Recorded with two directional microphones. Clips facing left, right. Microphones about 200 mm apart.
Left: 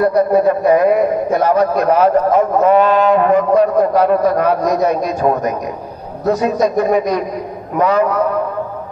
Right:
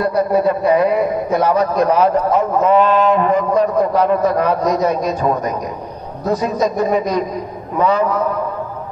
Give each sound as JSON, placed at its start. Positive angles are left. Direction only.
{"t": 0.0, "sound": "a man's voice", "side_deg": 50}
{"t": 6.4, "sound": "a man's voice", "side_deg": 60}